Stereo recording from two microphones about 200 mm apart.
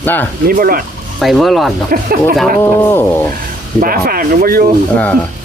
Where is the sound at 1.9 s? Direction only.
45° right (ahead or behind).